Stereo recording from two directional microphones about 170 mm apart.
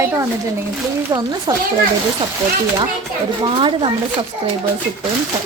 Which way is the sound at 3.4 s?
30° right (ahead or behind).